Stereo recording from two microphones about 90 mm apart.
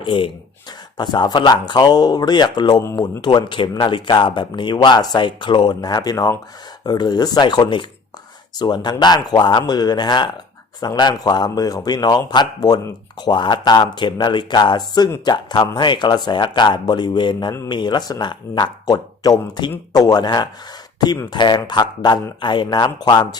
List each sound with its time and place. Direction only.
0.0 s speech: 70° left (ahead or behind)
0.9 s speech: 55° left (ahead or behind)
5.2 s speech: 65° left (ahead or behind)